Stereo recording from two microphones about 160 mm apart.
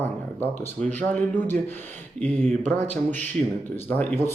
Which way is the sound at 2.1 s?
45° right (ahead or behind).